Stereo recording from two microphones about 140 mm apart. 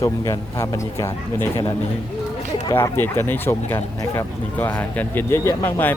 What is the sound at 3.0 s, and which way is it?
Speech, 15° left (ahead or behind).